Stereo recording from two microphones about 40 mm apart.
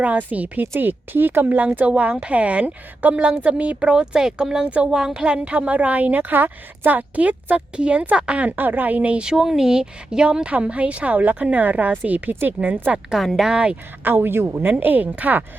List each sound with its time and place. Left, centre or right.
0.0 s speech: right
0.8 s a woman's voice: right
1.5 s speech: right
1.9 s speech: right
3.4 s speech: right
7.5 s speech: right
8.4 s speech: right
9.0 s speech: right
9.3 s speech: centre
10.5 s speech: right
13.1 s speech: centre
14.0 s a man's voice: right
14.7 s speech: right